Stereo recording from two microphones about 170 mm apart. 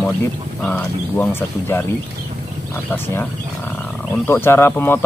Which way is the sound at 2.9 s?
15° left (ahead or behind).